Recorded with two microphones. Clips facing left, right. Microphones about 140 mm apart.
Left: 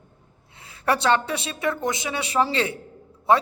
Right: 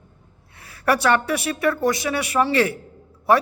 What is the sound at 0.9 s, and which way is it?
A man's voice, 25° left (ahead or behind).